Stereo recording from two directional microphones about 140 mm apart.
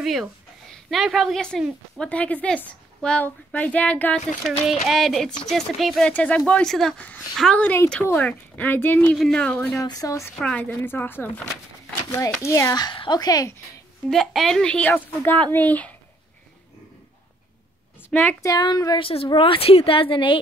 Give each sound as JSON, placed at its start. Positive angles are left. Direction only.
{"t": 0.0, "sound": "a woman's voice", "side_deg": 0}
{"t": 9.8, "sound": "speech", "side_deg": 25}
{"t": 10.4, "sound": "speech", "side_deg": 10}
{"t": 14.1, "sound": "speech", "side_deg": 0}
{"t": 18.1, "sound": "speech", "side_deg": 15}
{"t": 18.5, "sound": "speech", "side_deg": 30}
{"t": 19.0, "sound": "a woman's voice", "side_deg": 40}